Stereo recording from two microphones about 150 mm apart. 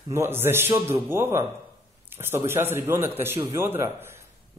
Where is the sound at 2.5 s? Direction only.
15° right (ahead or behind).